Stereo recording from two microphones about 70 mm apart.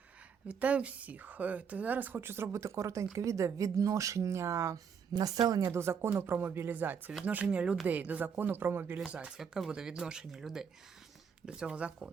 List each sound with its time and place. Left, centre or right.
0.4 s a woman's voice: centre; by 4.8 s right
5.1 s speech: right
5.7 s speech: right
9.0 s speech: centre